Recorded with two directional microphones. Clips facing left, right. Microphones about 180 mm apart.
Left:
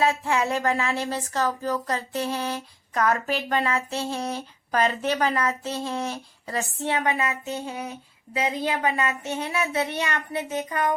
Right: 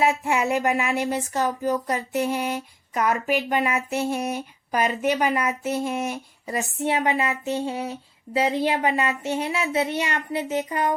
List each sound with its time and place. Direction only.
0.0 s speech: 20° right (ahead or behind)